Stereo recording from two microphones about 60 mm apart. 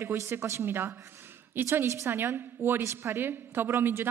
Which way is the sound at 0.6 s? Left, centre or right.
Right.